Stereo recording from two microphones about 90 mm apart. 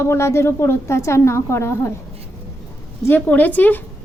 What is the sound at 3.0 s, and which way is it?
Speech, 20° left (ahead or behind).